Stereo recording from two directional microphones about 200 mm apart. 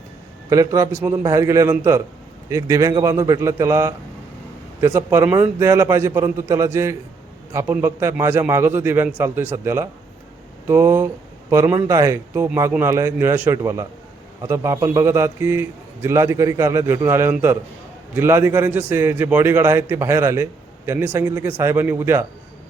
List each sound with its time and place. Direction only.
0.5 s a man's voice: 15° right (ahead or behind)